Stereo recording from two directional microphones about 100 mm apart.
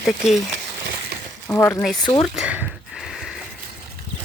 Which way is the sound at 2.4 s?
15° right (ahead or behind).